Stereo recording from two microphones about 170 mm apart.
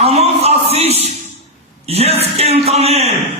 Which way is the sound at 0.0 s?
35° right (ahead or behind).